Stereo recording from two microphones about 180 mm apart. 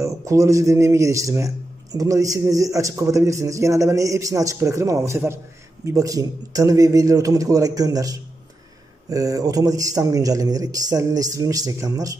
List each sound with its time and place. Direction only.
0.0 s a man's voice: 15° right (ahead or behind)